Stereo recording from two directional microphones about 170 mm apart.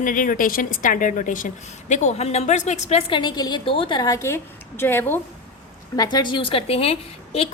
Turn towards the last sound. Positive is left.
turn(degrees=35)  # may be behind; listen again after turning